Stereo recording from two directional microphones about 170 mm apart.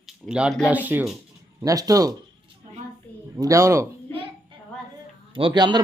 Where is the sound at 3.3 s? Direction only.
20° right (ahead or behind).